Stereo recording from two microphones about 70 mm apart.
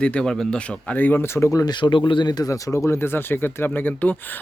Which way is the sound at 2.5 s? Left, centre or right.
Left.